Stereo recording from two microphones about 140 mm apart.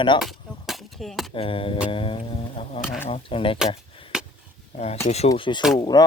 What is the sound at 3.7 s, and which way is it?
Chop, 40° left (ahead or behind).